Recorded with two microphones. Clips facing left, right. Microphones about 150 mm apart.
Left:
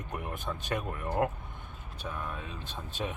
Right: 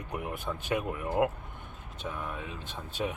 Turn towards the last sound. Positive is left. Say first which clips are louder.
# right 2 dB
turn(degrees=-15)  # may be behind; listen again after turning